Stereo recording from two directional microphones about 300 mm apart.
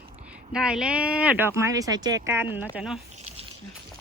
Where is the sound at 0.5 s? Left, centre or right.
Centre.